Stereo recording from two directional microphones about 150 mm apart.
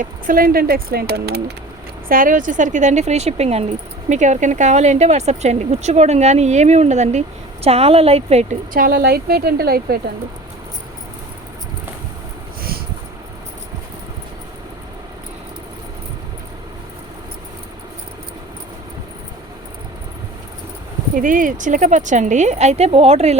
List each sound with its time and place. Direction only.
0.0 s speech: 70° right (ahead or behind); by 1.5 s 90° right
2.0 s speech: 65° right (ahead or behind); by 8.5 s 45° right (ahead or behind)
8.7 s speech: 80° right
21.2 s speech: 65° right (ahead or behind); by 23.4 s 45° right (ahead or behind)